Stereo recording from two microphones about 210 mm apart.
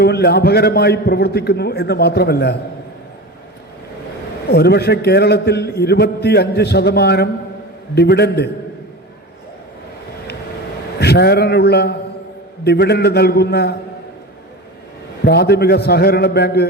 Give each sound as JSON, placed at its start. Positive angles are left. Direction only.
{"t": 0.0, "sound": "a man's voice", "side_deg": 50}
{"t": 4.4, "sound": "a man's voice", "side_deg": 50}
{"t": 11.0, "sound": "a man's voice", "side_deg": 50}
{"t": 15.2, "sound": "a man's voice", "side_deg": 50}